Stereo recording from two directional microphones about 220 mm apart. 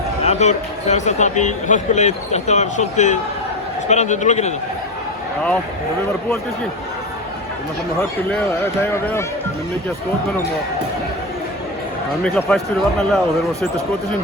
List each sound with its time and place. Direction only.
0.3 s a man's voice: 30° left (ahead or behind)
8.3 s speech: 10° left (ahead or behind)
12.2 s speech: 5° left (ahead or behind)